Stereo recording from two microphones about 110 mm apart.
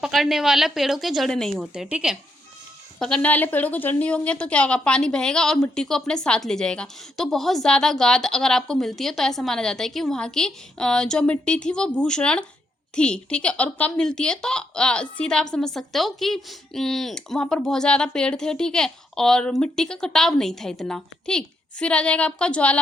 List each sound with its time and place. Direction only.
0.0 s speech: centre (ahead or behind)
1.6 s a woman's voice: 5° right (ahead or behind)
3.0 s a woman's voice: 10° left (ahead or behind)